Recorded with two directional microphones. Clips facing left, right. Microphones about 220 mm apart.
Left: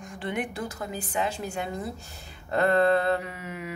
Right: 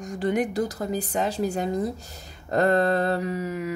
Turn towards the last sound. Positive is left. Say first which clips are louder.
# right 9 dB
turn(degrees=-40)  # may be behind; listen again after turning